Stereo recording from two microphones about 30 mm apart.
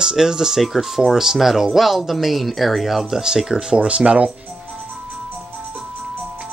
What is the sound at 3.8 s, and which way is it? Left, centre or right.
Speech, right.